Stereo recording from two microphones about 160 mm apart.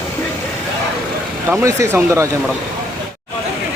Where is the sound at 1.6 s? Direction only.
20° right (ahead or behind).